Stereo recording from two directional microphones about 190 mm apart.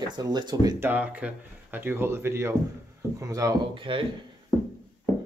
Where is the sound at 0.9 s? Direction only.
10° right (ahead or behind); by 4.0 s 25° right (ahead or behind).